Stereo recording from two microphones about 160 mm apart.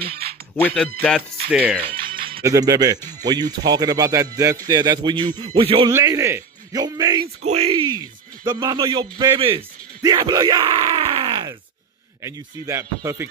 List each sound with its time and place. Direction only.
0.0 s music: 75° right (ahead or behind)
0.6 s speech: 10° left (ahead or behind)
1.5 s speech: 10° right (ahead or behind)
2.4 s speech: 20° right (ahead or behind)
5.9 s speech: 20° right (ahead or behind)
7.4 s a man's voice: 40° right (ahead or behind)
12.2 s speech: 20° right (ahead or behind)